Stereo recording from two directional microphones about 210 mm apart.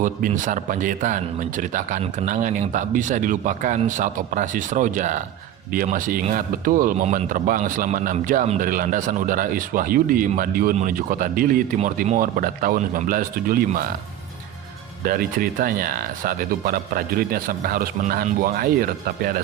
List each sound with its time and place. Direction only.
0.0 s speech: 35° right (ahead or behind)
15.0 s speech: 45° right (ahead or behind)